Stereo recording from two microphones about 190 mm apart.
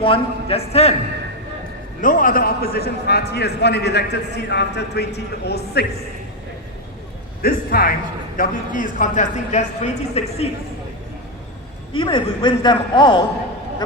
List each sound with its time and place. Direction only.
0.0 s a man's voice: 30° left (ahead or behind)
2.0 s a man's voice: 45° left (ahead or behind)
7.4 s a man's voice: 50° left (ahead or behind); by 10.5 s 35° left (ahead or behind)
11.9 s a man's voice: 25° left (ahead or behind)